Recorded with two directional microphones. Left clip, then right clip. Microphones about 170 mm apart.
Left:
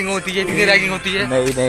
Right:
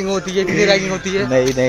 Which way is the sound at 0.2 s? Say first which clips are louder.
Right 1 dB; 70° right (ahead or behind).